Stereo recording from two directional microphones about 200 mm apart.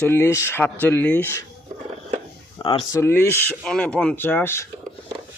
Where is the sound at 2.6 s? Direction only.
25° left (ahead or behind).